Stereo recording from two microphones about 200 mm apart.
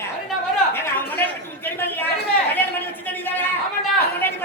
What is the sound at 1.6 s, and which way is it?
Chatter, 10° left (ahead or behind).